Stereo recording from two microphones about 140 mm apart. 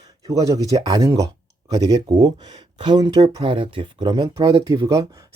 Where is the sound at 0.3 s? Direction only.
25° right (ahead or behind).